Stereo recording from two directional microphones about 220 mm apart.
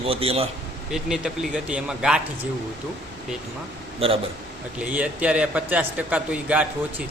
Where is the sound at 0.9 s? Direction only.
Centre (ahead or behind).